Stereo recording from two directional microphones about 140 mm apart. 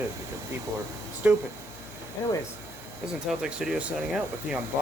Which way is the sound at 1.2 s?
15° right (ahead or behind).